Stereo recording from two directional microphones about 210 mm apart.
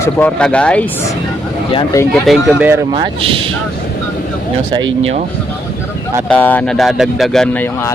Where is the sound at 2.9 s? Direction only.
25° right (ahead or behind).